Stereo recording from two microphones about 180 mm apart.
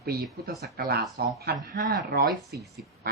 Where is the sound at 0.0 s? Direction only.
60° right (ahead or behind).